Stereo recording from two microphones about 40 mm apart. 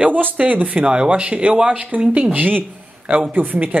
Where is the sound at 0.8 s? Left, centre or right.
Right.